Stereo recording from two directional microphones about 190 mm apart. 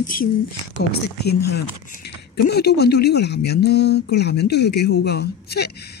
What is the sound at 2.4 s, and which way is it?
Speech, 60° left (ahead or behind).